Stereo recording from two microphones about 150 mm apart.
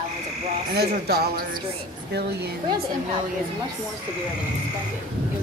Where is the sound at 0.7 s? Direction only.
90° right.